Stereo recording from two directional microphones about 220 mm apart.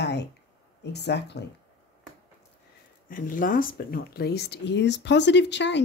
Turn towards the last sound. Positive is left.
turn(degrees=50)  # may be behind; listen again after turning